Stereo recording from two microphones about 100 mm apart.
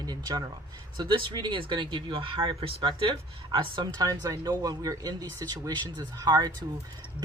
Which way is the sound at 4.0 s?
40° right (ahead or behind).